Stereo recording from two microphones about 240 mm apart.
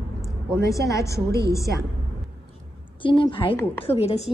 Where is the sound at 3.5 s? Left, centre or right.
Centre.